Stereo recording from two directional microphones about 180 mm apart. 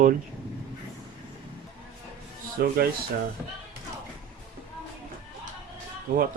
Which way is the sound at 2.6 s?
60° right (ahead or behind).